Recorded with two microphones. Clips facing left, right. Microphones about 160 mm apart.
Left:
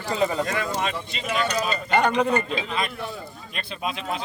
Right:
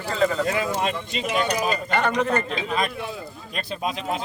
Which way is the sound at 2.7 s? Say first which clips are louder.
Right 3 dB; 45° right (ahead or behind).